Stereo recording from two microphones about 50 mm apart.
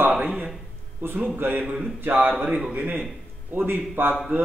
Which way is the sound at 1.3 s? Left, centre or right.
Right.